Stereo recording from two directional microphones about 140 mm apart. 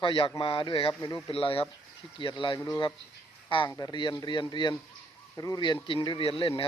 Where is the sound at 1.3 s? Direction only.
40° left (ahead or behind).